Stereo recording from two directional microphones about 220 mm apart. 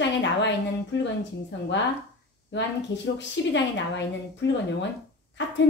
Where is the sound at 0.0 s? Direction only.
50° left (ahead or behind).